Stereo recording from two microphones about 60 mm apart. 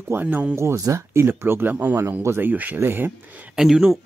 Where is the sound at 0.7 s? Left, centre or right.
Right.